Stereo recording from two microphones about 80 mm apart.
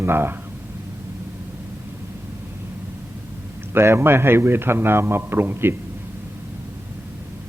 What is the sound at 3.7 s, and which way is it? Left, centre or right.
A man's voice, right.